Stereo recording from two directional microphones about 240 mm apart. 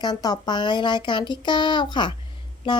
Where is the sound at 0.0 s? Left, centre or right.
Centre.